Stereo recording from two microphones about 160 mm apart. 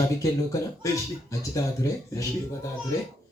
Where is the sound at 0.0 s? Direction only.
20° left (ahead or behind).